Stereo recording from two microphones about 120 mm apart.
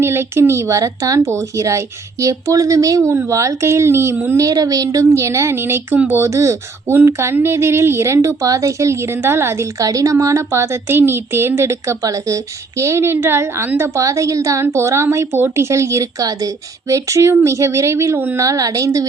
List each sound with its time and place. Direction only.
0.0 s speech: 20° right (ahead or behind)